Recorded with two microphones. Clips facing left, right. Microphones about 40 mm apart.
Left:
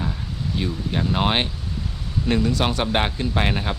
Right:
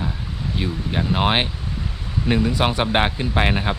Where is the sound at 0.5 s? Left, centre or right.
Centre.